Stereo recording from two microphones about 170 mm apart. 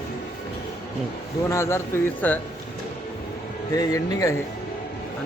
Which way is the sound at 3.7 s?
20° left (ahead or behind).